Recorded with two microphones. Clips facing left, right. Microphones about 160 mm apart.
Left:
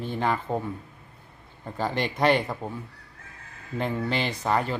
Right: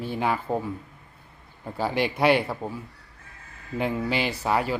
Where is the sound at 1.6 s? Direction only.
10° right (ahead or behind).